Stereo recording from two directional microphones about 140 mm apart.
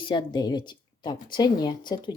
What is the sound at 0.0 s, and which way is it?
A woman's voice, 35° left (ahead or behind).